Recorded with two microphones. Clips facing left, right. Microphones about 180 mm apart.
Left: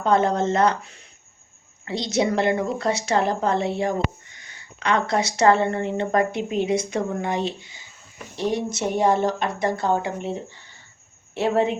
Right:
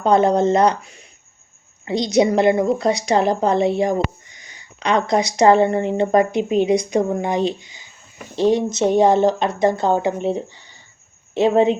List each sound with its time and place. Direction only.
0.0 s speech: 15° right (ahead or behind)
8.4 s speech: 90° right
9.0 s speech: 20° right (ahead or behind)